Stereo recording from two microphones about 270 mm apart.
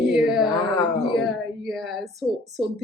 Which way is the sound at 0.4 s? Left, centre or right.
Centre.